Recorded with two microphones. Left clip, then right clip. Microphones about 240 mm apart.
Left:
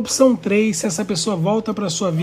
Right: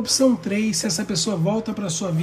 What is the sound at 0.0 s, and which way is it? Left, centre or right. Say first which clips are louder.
A man's voice: left 4 dB; centre.